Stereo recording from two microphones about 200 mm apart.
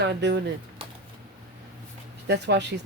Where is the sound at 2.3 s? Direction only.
60° right (ahead or behind).